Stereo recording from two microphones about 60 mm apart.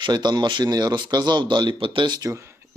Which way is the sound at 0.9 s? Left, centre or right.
Right.